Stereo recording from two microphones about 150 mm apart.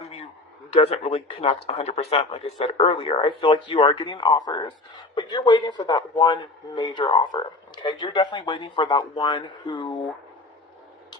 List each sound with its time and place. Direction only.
0.7 s speech: 40° left (ahead or behind)